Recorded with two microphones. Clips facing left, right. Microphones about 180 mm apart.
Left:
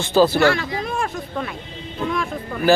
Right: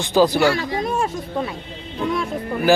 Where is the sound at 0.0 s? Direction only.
15° right (ahead or behind).